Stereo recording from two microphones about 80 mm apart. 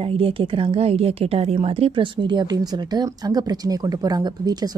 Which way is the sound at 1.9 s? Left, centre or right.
Right.